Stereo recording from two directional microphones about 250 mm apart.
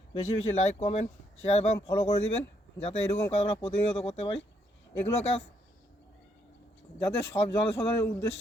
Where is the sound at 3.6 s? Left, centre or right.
Left.